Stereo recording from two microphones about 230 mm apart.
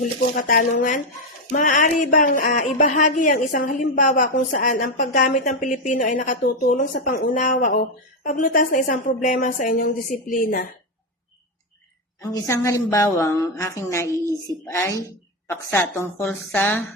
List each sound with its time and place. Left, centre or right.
0.0 s speech: left
12.2 s a woman's voice: centre